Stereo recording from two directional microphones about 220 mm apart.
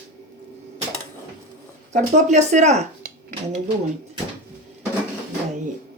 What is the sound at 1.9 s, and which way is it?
Speech, 35° right (ahead or behind).